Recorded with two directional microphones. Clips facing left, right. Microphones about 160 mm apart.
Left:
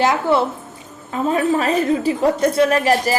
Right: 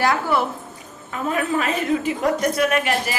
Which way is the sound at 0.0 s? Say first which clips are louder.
Left 4 dB; 20° left (ahead or behind).